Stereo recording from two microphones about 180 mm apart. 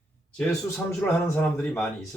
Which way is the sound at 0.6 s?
15° left (ahead or behind).